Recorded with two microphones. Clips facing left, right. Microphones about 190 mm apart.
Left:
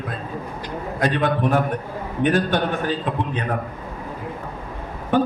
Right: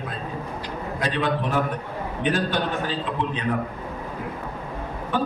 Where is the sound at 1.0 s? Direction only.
50° left (ahead or behind).